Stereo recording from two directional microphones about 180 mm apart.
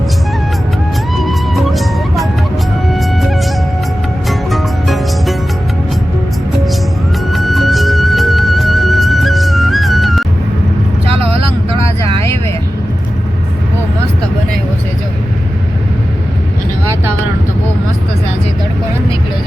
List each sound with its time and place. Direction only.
1.1 s music: centre (ahead or behind)
4.3 s music: centre (ahead or behind)
7.3 s music: centre (ahead or behind)
11.1 s vehicle: 30° right (ahead or behind)